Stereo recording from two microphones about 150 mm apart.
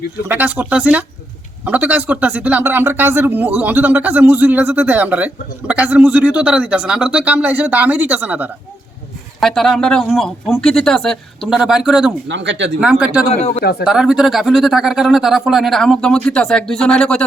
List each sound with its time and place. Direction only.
0.3 s speech: 10° right (ahead or behind)
9.4 s speech: centre (ahead or behind)
13.3 s speech: 45° left (ahead or behind)
13.8 s speech: 5° right (ahead or behind)